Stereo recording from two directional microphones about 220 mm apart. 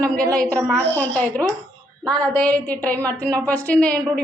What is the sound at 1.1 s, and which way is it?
A woman's voice, 10° left (ahead or behind).